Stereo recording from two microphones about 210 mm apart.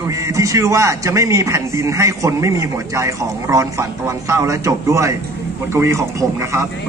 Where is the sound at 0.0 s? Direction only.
15° right (ahead or behind).